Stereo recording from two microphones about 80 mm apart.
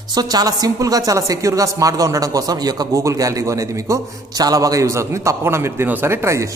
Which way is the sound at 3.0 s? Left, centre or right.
Right.